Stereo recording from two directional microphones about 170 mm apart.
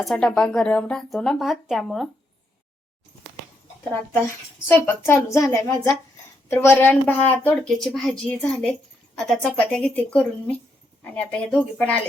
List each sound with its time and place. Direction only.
0.0 s speech: 5° left (ahead or behind)
4.7 s a woman's voice: 10° left (ahead or behind)